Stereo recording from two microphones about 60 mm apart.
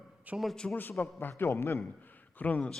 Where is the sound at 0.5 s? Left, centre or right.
Centre.